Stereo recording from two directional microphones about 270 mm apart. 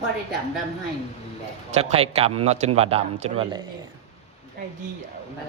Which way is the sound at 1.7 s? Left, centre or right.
Right.